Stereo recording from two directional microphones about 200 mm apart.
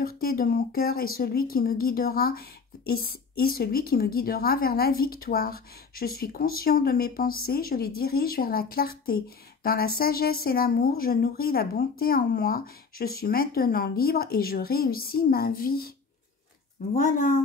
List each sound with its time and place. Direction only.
0.0 s speech: 45° left (ahead or behind)
16.9 s speech: 45° left (ahead or behind)